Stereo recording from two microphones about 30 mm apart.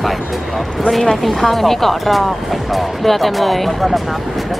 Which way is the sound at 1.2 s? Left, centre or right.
Centre.